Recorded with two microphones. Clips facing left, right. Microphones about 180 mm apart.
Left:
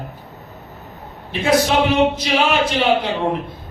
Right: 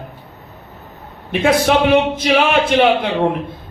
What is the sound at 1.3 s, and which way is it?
A man's voice, 55° right (ahead or behind).